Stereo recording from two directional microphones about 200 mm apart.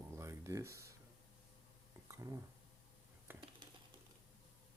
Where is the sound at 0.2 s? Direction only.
15° right (ahead or behind).